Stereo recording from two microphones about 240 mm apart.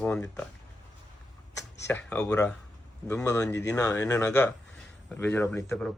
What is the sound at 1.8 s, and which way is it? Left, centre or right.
Speech, centre.